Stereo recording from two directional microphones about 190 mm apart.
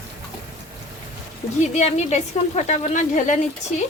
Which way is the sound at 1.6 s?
35° left (ahead or behind).